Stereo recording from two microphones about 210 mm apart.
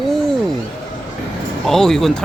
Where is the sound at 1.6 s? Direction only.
Centre (ahead or behind).